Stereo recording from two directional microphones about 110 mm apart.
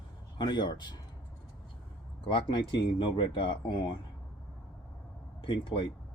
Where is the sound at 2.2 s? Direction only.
45° left (ahead or behind).